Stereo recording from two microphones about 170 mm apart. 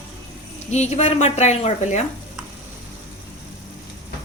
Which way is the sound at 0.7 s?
40° left (ahead or behind).